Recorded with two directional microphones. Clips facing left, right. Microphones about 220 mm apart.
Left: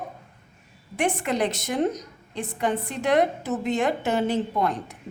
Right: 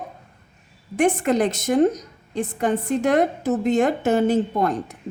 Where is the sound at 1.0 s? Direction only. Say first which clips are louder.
Right 6 dB; 45° right (ahead or behind).